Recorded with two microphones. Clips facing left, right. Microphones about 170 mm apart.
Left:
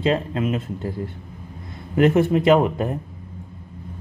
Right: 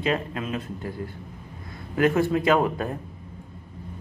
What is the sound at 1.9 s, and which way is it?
Speech, 25° left (ahead or behind).